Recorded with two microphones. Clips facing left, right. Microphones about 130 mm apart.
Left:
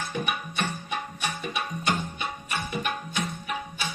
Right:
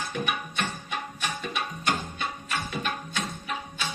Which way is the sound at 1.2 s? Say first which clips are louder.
Right 1 dB; 15° left (ahead or behind).